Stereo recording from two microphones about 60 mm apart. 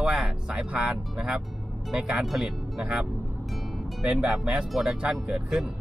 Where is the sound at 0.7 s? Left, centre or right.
Centre.